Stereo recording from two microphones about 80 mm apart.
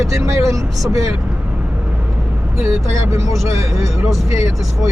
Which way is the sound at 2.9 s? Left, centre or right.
Right.